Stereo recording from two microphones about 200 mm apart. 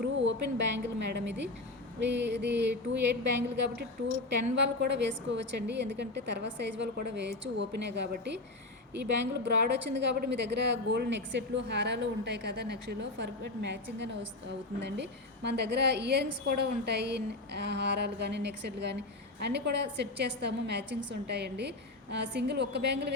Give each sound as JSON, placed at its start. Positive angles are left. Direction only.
{"t": 0.0, "sound": "a woman's voice", "side_deg": -65}